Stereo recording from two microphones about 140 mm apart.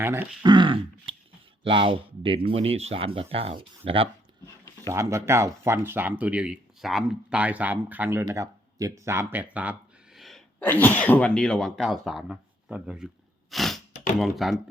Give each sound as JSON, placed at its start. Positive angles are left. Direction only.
{"t": 0.0, "sound": "speech", "side_deg": -15}
{"t": 0.4, "sound": "speech", "side_deg": -35}
{"t": 4.9, "sound": "speech", "side_deg": -20}
{"t": 8.2, "sound": "speech", "side_deg": -25}
{"t": 10.2, "sound": "speech", "side_deg": 0}
{"t": 13.5, "sound": "a sound", "side_deg": 0}
{"t": 14.2, "sound": "speech", "side_deg": 0}